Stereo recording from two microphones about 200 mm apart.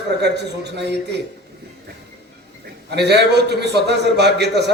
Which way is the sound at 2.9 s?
55° right (ahead or behind).